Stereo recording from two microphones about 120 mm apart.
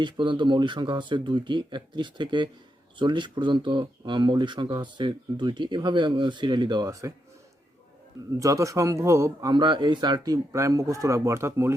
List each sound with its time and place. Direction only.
0.0 s speech: 40° right (ahead or behind)
8.3 s speech: 25° right (ahead or behind)
9.5 s speech: 40° right (ahead or behind); by 11.7 s 20° right (ahead or behind)